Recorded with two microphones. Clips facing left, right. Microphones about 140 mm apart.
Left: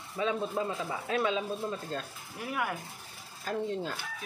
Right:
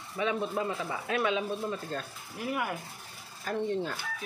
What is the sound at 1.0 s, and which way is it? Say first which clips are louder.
Speech: right 1 dB; 30° left (ahead or behind).